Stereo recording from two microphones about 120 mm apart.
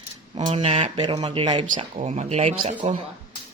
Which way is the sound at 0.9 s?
40° right (ahead or behind).